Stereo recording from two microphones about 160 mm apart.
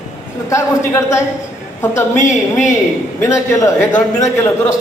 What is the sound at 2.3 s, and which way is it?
Speech, 50° left (ahead or behind).